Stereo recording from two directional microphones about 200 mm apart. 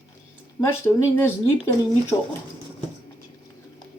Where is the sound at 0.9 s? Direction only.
10° left (ahead or behind).